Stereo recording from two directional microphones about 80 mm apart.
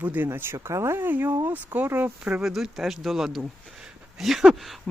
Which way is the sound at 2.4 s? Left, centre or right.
Centre.